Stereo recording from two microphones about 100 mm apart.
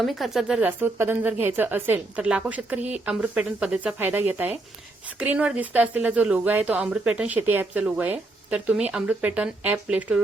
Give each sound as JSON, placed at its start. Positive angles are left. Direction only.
{"t": 0.0, "sound": "speech", "side_deg": 0}
{"t": 0.6, "sound": "a woman's voice", "side_deg": -20}